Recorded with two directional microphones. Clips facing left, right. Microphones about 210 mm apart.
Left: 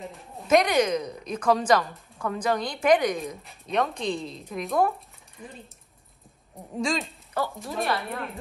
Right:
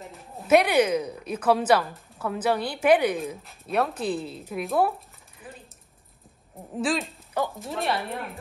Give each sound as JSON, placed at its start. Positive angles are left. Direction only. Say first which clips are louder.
{"t": 0.4, "sound": "a woman's voice", "louder": "right 2 dB", "side_deg": -10}
{"t": 6.7, "sound": "speech", "louder": "right 1 dB", "side_deg": -5}